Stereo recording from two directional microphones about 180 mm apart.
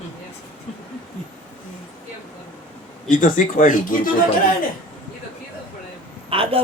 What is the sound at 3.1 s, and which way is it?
Speech, 45° left (ahead or behind).